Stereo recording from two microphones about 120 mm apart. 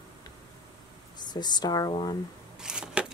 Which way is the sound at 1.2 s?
35° left (ahead or behind).